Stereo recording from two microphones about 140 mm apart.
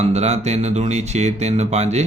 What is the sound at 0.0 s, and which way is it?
Speech, 50° right (ahead or behind).